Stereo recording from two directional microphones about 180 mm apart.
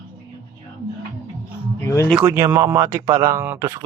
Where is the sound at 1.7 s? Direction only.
15° left (ahead or behind).